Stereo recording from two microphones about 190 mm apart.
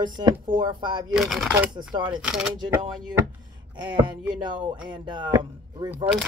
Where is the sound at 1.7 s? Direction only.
25° right (ahead or behind).